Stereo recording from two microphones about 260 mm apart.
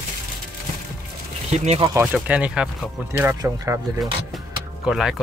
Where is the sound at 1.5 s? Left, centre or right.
Right.